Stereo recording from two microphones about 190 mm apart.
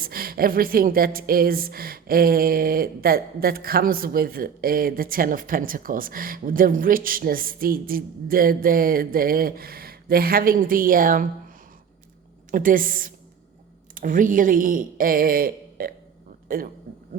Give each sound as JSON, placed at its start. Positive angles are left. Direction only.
{"t": 0.0, "sound": "a woman's voice", "side_deg": -50}
{"t": 12.5, "sound": "a woman's voice", "side_deg": -45}